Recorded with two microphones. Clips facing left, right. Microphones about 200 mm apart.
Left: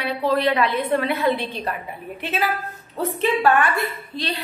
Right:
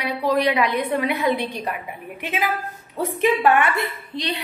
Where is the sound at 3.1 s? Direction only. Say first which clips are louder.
Right 1 dB; 15° right (ahead or behind).